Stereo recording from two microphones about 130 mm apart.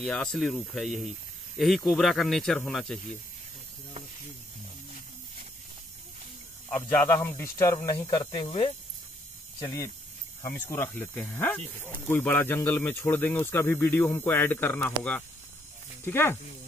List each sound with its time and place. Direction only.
0.1 s speech: 5° left (ahead or behind)
7.1 s speech: 20° left (ahead or behind)
8.1 s speech: 40° left (ahead or behind)
9.6 s speech: 30° left (ahead or behind)